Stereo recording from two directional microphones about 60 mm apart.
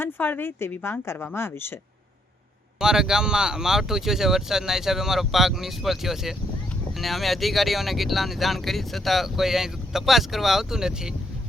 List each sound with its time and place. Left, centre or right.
0.0 s speech: left
2.7 s speech: centre